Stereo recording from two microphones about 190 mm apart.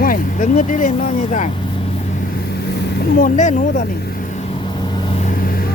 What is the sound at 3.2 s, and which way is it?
Speech, 40° left (ahead or behind).